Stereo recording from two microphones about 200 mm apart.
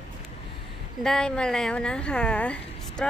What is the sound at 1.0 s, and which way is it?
A woman's voice, 5° left (ahead or behind).